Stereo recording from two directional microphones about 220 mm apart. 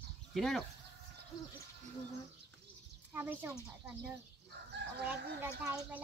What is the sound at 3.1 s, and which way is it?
Speech, 10° right (ahead or behind).